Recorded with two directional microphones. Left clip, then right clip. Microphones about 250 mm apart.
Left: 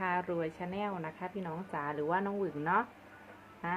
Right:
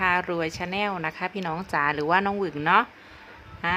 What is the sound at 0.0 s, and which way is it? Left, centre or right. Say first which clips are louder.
A woman's voice: right 10 dB; right.